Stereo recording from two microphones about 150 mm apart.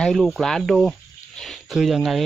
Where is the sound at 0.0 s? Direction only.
Centre (ahead or behind).